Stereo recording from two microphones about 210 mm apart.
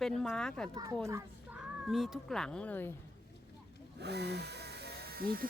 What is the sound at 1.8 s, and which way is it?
Speech, centre (ahead or behind).